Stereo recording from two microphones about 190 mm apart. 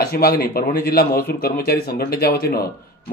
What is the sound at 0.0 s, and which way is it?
A man's voice, 55° left (ahead or behind).